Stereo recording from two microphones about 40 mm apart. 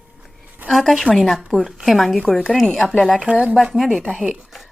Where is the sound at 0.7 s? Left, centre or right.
Centre.